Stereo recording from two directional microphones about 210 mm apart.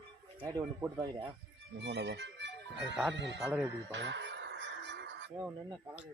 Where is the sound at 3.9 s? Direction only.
60° right (ahead or behind).